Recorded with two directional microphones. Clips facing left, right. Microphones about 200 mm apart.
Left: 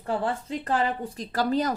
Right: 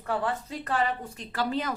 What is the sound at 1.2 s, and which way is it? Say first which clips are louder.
Speech: left 6 dB; 40° left (ahead or behind).